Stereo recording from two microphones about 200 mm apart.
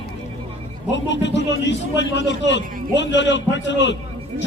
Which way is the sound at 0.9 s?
65° left (ahead or behind).